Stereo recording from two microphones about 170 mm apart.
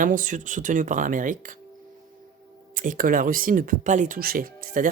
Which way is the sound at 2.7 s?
55° right (ahead or behind).